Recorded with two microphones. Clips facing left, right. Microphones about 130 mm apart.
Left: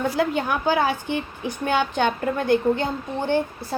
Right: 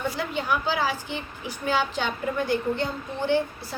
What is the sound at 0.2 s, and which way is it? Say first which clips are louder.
A woman's voice: left 5 dB; 55° left (ahead or behind).